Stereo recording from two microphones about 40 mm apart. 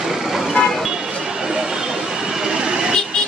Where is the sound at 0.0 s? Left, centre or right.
Centre.